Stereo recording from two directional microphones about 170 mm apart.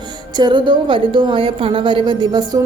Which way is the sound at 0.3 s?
25° right (ahead or behind).